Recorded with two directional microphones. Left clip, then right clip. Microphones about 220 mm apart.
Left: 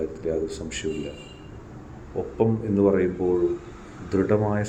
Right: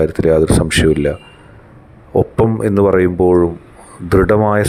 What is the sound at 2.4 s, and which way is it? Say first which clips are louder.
Speech: right 6 dB; 55° right (ahead or behind).